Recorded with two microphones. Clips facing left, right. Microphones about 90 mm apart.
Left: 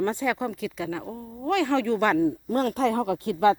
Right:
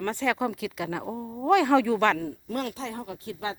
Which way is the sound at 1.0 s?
20° right (ahead or behind).